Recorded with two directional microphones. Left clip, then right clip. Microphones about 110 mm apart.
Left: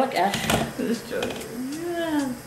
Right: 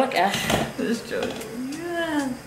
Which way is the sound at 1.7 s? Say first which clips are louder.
Even; centre (ahead or behind).